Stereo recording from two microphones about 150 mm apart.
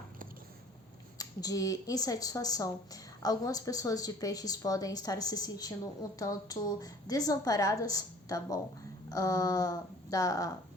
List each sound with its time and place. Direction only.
1.2 s speech: 25° left (ahead or behind)